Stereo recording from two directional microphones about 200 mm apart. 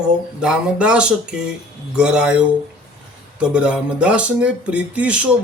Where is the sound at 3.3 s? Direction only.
5° right (ahead or behind).